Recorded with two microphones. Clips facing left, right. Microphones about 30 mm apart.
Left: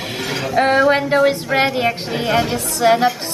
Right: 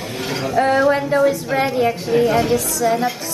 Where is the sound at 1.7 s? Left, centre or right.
Left.